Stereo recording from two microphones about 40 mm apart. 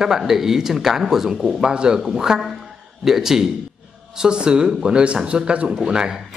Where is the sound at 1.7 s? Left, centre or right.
Right.